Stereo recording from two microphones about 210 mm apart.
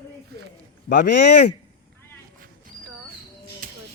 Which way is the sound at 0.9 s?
55° left (ahead or behind).